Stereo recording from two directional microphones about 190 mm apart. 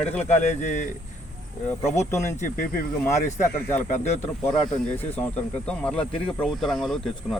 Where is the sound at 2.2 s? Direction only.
40° left (ahead or behind).